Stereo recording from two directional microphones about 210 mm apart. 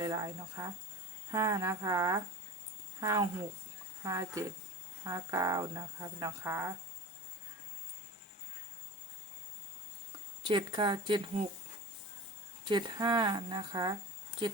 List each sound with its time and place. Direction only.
0.0 s speech: 15° right (ahead or behind)
10.4 s speech: 20° right (ahead or behind)
12.6 s speech: 20° right (ahead or behind)